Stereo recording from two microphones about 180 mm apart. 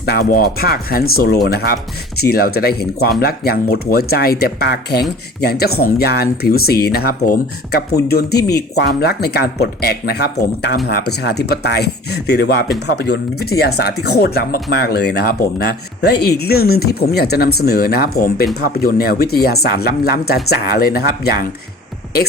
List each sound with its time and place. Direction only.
0.0 s speech: 60° left (ahead or behind)